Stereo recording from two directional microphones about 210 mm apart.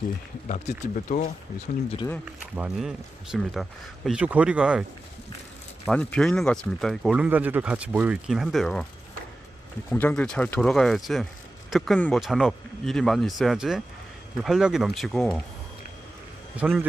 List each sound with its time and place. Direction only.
0.4 s speech: 35° left (ahead or behind)
2.6 s speech: centre (ahead or behind)
9.9 s speech: 10° left (ahead or behind)
16.6 s speech: 5° right (ahead or behind)